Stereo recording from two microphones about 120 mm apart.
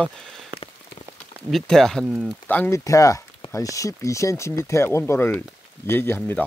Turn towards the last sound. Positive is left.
turn(degrees=20)  # may be behind; listen again after turning